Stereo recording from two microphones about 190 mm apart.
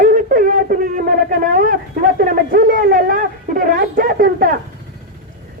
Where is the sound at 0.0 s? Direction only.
45° right (ahead or behind).